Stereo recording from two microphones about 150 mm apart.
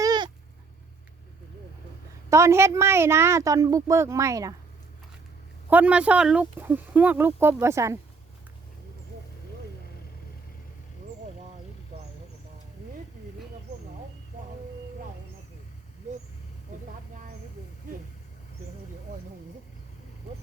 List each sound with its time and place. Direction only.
0.0 s a sound: 25° right (ahead or behind)
2.3 s a woman's voice: 20° right (ahead or behind)
5.7 s speech: 10° right (ahead or behind)